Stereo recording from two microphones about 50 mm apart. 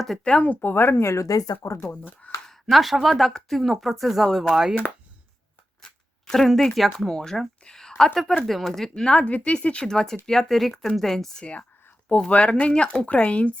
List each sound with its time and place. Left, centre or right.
0.3 s speech: left
0.5 s speech: left
1.0 s speech: left
2.5 s speech: centre
6.2 s a woman's voice: centre
9.0 s speech: left; by 11.4 s centre
12.0 s speech: left